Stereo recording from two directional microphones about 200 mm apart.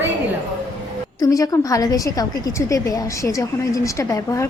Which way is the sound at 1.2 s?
15° left (ahead or behind).